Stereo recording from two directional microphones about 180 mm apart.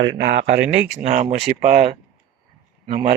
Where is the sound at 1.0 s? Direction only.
40° right (ahead or behind).